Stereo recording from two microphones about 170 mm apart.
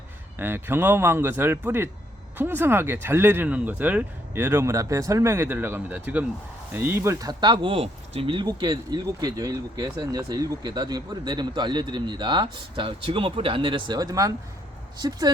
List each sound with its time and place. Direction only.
0.3 s speech: 15° right (ahead or behind)